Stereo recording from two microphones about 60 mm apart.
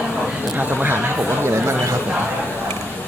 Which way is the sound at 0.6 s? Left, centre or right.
Right.